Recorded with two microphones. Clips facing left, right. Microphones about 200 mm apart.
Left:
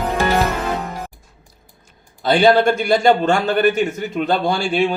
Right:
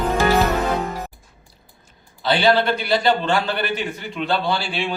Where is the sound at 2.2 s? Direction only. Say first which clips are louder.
Left 4 dB; 45° left (ahead or behind).